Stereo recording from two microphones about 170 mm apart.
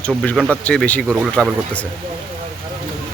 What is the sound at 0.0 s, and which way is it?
A man's voice, 5° left (ahead or behind).